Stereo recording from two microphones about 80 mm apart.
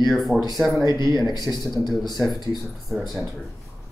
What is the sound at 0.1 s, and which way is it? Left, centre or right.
Speech, centre.